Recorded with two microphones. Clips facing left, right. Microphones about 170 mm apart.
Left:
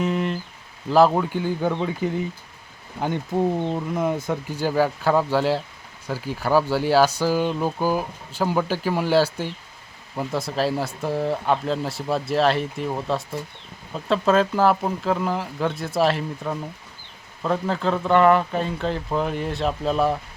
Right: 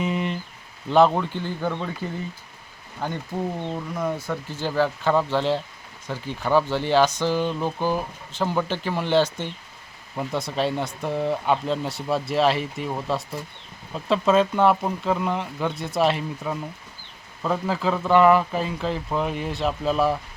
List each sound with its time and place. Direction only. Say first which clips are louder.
0.0 s a sound: left 2 dB; centre (ahead or behind)
0.9 s speech: left 1 dB; 5° left (ahead or behind)
3.7 s speech: left 3 dB; 20° left (ahead or behind); by 20.1 s centre (ahead or behind)